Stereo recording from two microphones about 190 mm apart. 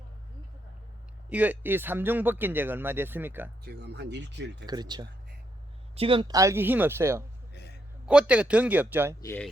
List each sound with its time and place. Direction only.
1.3 s speech: 10° right (ahead or behind)
3.6 s speech: 60° right (ahead or behind)
4.6 s speech: 20° right (ahead or behind)
7.5 s a sound: 60° left (ahead or behind)
8.0 s speech: 5° right (ahead or behind)
9.2 s speech: 10° left (ahead or behind)